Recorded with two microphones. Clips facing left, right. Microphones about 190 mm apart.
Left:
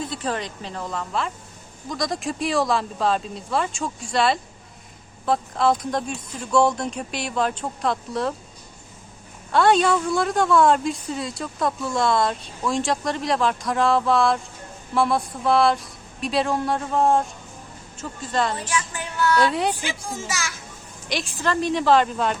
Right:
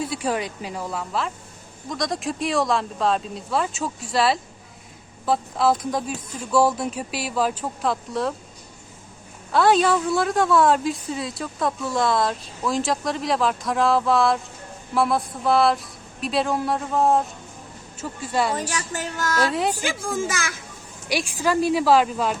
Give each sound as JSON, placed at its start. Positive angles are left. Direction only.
{"t": 0.0, "sound": "a woman's voice", "side_deg": -10}
{"t": 9.5, "sound": "a woman's voice", "side_deg": 0}
{"t": 18.7, "sound": "a woman's voice", "side_deg": -40}
{"t": 21.1, "sound": "a woman's voice", "side_deg": -10}